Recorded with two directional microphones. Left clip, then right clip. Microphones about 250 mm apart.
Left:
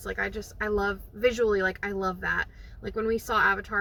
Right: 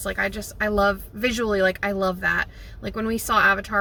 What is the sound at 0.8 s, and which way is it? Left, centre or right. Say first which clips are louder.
Speech: right 4 dB; centre.